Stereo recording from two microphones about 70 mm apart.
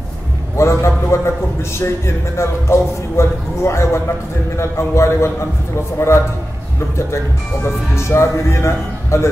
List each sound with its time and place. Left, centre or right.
0.6 s a man's voice: left
7.6 s a man's voice: left